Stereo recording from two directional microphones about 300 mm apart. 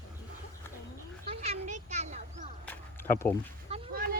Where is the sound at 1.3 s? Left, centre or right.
Centre.